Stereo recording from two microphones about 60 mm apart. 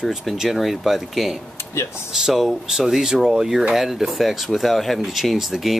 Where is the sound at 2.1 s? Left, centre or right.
Centre.